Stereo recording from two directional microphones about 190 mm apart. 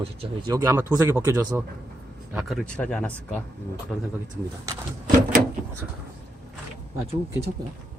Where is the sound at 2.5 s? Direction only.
5° left (ahead or behind).